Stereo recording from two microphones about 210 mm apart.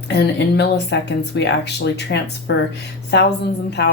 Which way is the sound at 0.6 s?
55° left (ahead or behind).